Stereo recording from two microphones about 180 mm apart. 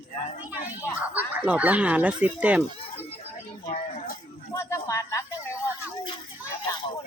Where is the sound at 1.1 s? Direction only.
10° right (ahead or behind).